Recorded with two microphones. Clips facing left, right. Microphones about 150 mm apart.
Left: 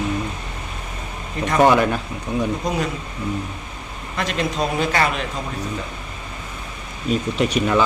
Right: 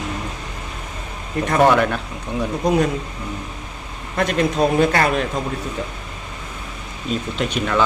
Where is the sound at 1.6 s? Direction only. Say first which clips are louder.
Even; 5° left (ahead or behind).